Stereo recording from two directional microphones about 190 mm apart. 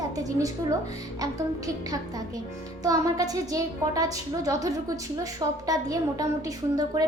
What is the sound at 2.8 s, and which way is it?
A woman's voice, 20° right (ahead or behind).